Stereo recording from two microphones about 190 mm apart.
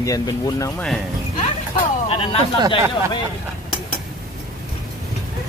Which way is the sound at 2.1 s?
30° left (ahead or behind).